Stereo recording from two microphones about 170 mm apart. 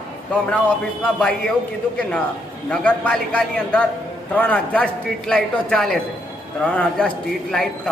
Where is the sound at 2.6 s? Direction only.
10° left (ahead or behind).